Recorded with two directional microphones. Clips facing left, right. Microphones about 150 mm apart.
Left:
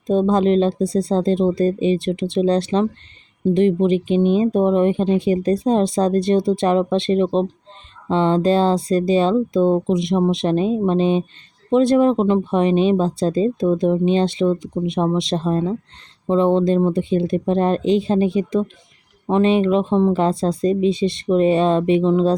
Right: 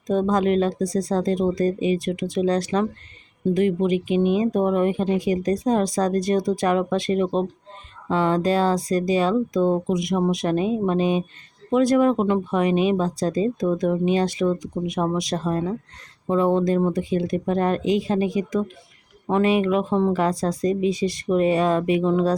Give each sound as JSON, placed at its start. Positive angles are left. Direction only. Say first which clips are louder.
{"t": 0.1, "sound": "speech", "louder": "left 4 dB", "side_deg": 25}